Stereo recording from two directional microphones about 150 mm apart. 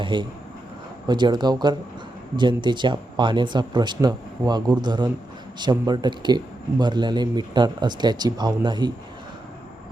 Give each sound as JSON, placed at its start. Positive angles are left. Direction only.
{"t": 0.0, "sound": "speech", "side_deg": -30}